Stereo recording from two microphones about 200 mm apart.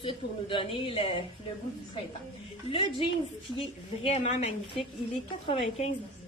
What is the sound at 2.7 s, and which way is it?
A woman's voice, 25° left (ahead or behind).